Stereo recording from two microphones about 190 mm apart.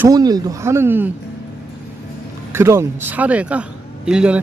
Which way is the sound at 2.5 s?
15° right (ahead or behind).